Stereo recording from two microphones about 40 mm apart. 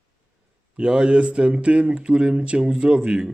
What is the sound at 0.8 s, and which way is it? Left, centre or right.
Speech, right.